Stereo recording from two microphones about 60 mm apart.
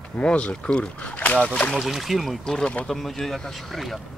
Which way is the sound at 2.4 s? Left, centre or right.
Centre.